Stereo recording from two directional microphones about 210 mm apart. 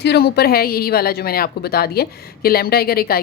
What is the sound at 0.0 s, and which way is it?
Speech, 50° left (ahead or behind).